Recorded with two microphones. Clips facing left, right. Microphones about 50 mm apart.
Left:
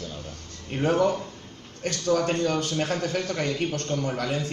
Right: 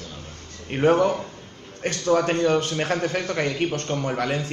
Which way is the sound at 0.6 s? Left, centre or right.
Right.